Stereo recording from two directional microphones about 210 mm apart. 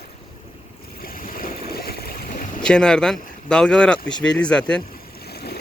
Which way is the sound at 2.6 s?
5° left (ahead or behind).